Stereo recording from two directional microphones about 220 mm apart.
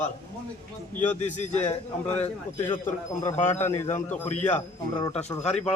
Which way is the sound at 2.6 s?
10° left (ahead or behind).